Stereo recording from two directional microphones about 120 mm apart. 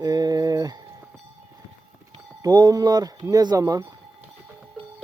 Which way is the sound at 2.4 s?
35° right (ahead or behind).